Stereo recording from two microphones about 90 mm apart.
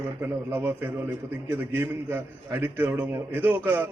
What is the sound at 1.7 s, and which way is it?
A man's voice, 25° right (ahead or behind).